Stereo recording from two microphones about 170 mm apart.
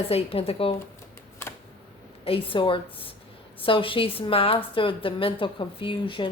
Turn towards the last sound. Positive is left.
turn(degrees=30)  # may be behind; listen again after turning